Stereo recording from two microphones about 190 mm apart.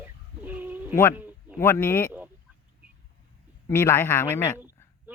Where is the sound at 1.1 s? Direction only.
10° right (ahead or behind).